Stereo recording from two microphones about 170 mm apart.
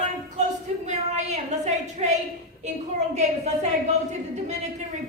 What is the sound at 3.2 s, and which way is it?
Speech, 40° right (ahead or behind).